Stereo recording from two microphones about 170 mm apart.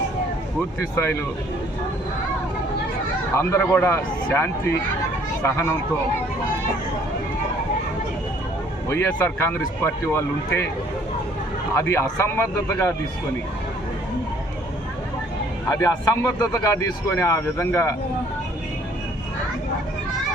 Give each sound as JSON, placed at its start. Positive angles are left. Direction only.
{"t": 0.8, "sound": "speech", "side_deg": 15}
{"t": 3.3, "sound": "speech", "side_deg": 15}
{"t": 8.9, "sound": "speech", "side_deg": 15}
{"t": 11.7, "sound": "speech", "side_deg": 15}
{"t": 15.7, "sound": "speech", "side_deg": 20}